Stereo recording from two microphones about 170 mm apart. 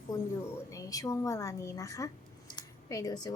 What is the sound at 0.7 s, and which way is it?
A woman's voice, 20° left (ahead or behind).